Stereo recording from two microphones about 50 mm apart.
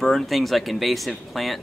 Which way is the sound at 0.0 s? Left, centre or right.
Centre.